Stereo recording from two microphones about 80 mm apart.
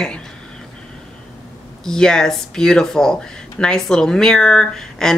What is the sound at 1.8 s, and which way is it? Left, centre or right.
Speech, centre.